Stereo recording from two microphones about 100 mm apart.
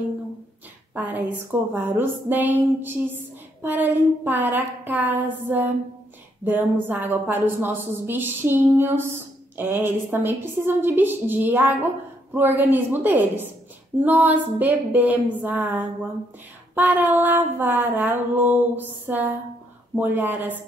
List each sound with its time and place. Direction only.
0.9 s a woman's voice: 15° right (ahead or behind)